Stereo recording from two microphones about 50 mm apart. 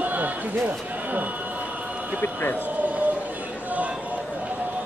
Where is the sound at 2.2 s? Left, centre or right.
Left.